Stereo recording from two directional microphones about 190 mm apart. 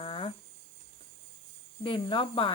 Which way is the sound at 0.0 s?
30° left (ahead or behind).